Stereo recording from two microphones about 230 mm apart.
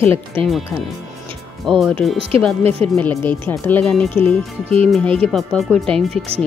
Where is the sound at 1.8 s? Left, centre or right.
Centre.